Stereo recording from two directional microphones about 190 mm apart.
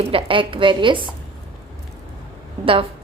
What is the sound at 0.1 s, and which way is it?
Speech, 30° right (ahead or behind).